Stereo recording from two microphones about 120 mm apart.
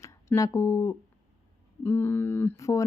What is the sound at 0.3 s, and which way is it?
Speech, 25° left (ahead or behind).